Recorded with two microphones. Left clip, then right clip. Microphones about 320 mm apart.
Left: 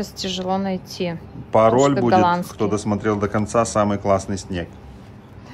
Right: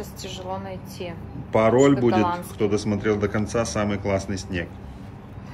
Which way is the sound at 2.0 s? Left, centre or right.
Left.